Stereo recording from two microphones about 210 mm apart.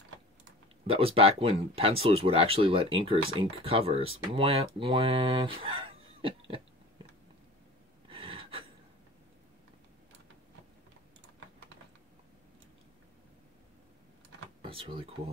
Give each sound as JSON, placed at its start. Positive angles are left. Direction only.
{"t": 0.8, "sound": "speech", "side_deg": -25}
{"t": 8.1, "sound": "gasp", "side_deg": -25}
{"t": 14.6, "sound": "drawer open or close", "side_deg": -25}